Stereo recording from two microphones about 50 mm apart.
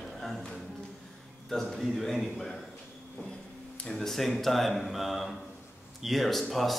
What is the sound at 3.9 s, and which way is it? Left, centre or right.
Speech, centre.